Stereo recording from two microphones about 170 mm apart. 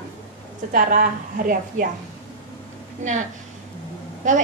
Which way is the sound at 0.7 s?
55° right (ahead or behind).